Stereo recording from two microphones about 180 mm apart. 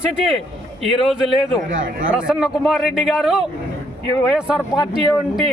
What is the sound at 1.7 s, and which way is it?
Speech, 90° right.